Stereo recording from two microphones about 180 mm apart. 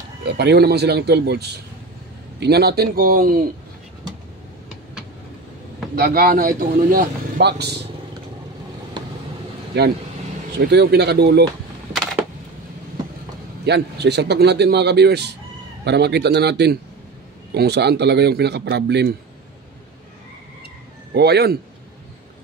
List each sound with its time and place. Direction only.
0.2 s a man's voice: 65° right (ahead or behind); by 3.4 s 50° right (ahead or behind)
5.9 s a man's voice: 55° right (ahead or behind)
9.8 s a man's voice: 65° right (ahead or behind)
13.7 s speech: 65° right (ahead or behind)
21.1 s a man's voice: 65° right (ahead or behind)